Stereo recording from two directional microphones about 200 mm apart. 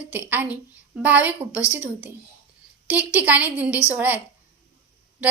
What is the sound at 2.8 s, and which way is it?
A woman's voice, 10° right (ahead or behind).